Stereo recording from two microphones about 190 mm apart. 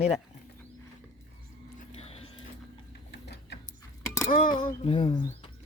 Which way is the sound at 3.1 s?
60° left (ahead or behind).